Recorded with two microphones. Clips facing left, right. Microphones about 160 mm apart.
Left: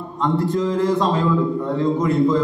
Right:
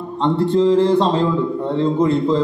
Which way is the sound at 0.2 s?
30° right (ahead or behind).